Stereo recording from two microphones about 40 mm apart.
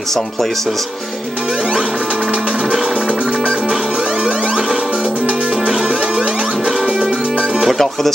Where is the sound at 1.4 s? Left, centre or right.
Right.